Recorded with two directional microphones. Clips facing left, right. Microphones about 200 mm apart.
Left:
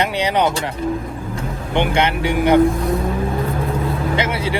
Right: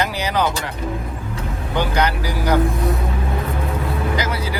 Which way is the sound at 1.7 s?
25° left (ahead or behind).